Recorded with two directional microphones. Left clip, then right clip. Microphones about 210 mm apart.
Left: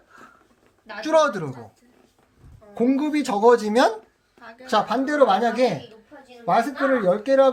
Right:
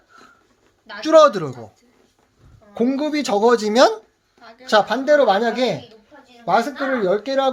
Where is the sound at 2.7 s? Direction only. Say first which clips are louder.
Right 1 dB; 35° right (ahead or behind).